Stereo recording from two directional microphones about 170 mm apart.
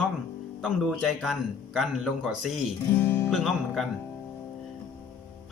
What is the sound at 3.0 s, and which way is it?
Speech, 10° left (ahead or behind).